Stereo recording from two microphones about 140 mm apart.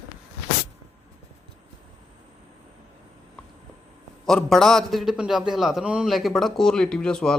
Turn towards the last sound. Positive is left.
turn(degrees=5)  # may be behind; listen again after turning